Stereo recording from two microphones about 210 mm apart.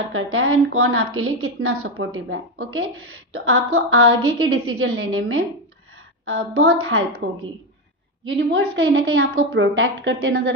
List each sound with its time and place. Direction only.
0.1 s a woman's voice: 85° right
3.4 s a woman's voice: 85° right
6.2 s a woman's voice: 60° right (ahead or behind)
8.3 s a woman's voice: 65° right (ahead or behind)
9.3 s a woman's voice: 70° right (ahead or behind)